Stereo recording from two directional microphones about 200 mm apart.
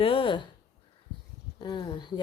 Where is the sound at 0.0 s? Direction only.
25° left (ahead or behind).